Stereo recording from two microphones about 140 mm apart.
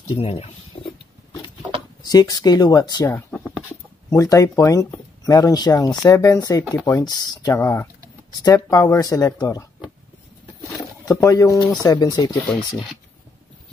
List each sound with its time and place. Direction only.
0.1 s speech: 45° left (ahead or behind)
2.0 s speech: 25° left (ahead or behind)
3.3 s a sound: 5° left (ahead or behind)
4.1 s speech: 25° left (ahead or behind)
11.1 s speech: 25° left (ahead or behind)
12.4 s speech: centre (ahead or behind)